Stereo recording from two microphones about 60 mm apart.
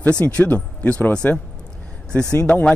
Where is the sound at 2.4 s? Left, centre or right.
Centre.